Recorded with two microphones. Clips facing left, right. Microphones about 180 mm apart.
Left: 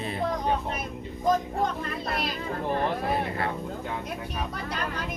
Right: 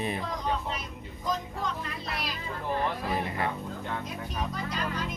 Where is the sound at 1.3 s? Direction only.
50° left (ahead or behind).